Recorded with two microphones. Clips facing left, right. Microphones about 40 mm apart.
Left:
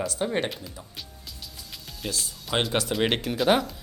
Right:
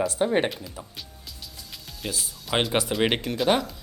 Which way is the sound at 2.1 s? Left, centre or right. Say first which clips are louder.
Right 1 dB; centre.